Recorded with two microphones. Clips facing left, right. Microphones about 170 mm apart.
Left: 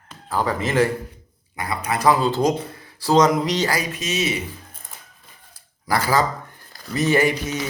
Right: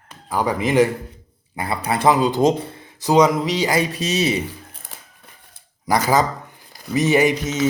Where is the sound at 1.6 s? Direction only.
30° right (ahead or behind).